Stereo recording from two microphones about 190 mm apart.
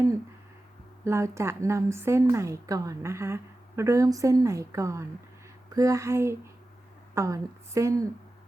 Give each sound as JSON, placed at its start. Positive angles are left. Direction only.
{"t": 1.0, "sound": "a woman's voice", "side_deg": -15}